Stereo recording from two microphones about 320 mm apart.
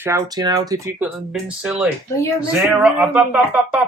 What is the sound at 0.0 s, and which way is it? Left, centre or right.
Speech, centre.